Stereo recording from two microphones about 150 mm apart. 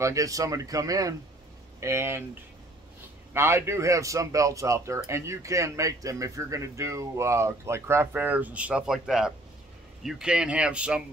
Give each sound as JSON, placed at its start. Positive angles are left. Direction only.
{"t": 0.0, "sound": "speech", "side_deg": -20}
{"t": 3.3, "sound": "speech", "side_deg": -15}